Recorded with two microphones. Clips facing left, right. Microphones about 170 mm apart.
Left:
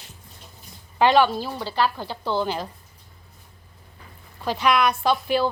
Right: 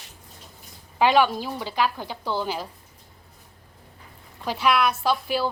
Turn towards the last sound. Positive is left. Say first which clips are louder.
# left 3 dB
turn(degrees=-5)  # may be behind; listen again after turning